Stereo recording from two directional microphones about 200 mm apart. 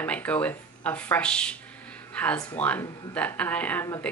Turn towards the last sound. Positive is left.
turn(degrees=10)  # may be behind; listen again after turning